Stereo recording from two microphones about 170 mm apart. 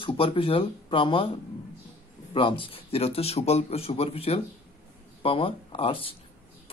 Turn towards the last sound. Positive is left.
turn(degrees=35)  # may be behind; listen again after turning